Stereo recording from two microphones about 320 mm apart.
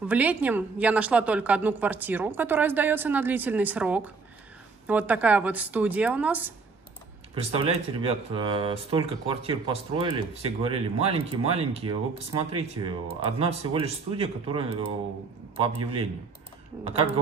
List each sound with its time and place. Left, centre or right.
0.0 s a woman's voice: centre
7.3 s speech: centre